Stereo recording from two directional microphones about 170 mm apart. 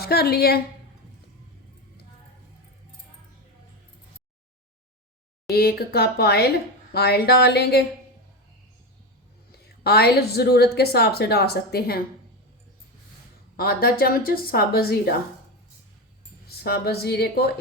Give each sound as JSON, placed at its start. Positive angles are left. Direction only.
{"t": 0.0, "sound": "a woman's voice", "side_deg": 65}
{"t": 5.5, "sound": "a woman's voice", "side_deg": 65}
{"t": 9.8, "sound": "a woman's voice", "side_deg": 70}
{"t": 13.6, "sound": "a woman's voice", "side_deg": 60}
{"t": 16.6, "sound": "a woman's voice", "side_deg": 70}